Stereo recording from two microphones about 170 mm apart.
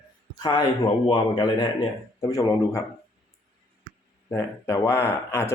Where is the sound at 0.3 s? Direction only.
25° left (ahead or behind).